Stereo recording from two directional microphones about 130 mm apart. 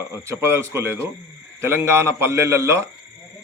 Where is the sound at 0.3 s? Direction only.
20° right (ahead or behind).